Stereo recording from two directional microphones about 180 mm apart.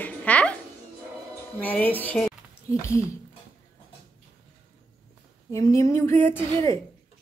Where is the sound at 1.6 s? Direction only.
10° left (ahead or behind).